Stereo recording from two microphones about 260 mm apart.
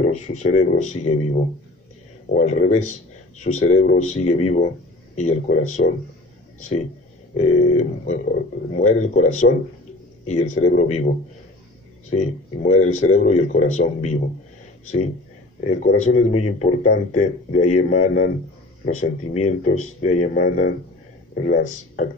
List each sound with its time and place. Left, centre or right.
0.0 s speech: left
7.3 s speech: left
12.1 s speech: left
15.7 s speech: left